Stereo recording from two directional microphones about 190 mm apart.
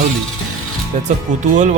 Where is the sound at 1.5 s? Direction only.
40° right (ahead or behind).